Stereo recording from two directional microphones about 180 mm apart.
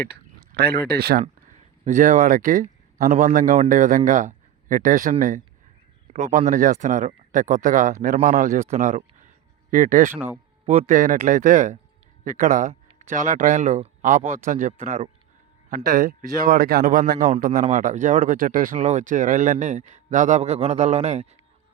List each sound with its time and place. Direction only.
0.5 s speech: 60° right (ahead or behind)
1.8 s speech: 45° right (ahead or behind)
10.1 s speech: 10° right (ahead or behind)
10.7 s speech: 40° right (ahead or behind)
15.7 s speech: 50° right (ahead or behind)